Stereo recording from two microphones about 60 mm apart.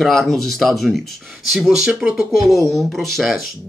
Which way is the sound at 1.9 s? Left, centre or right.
Centre.